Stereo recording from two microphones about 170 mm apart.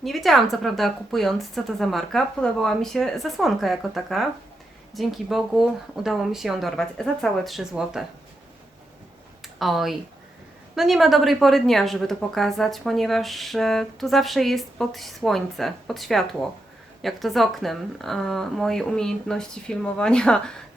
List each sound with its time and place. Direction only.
0.0 s a woman's voice: centre (ahead or behind)
9.4 s a woman's voice: centre (ahead or behind)